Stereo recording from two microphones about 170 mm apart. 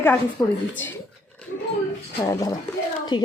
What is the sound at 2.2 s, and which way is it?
Speech, 20° left (ahead or behind).